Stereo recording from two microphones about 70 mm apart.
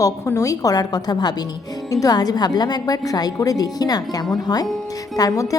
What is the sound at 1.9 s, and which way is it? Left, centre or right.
A woman's voice, left.